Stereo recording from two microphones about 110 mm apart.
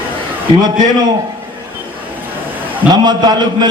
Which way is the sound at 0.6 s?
40° right (ahead or behind).